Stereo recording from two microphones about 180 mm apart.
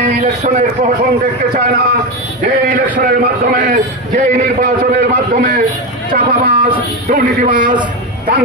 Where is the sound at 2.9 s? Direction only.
55° right (ahead or behind).